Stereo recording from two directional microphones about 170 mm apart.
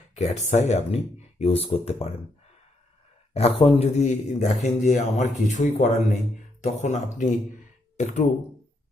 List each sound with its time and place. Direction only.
0.2 s speech: 40° left (ahead or behind)
3.6 s speech: 35° left (ahead or behind)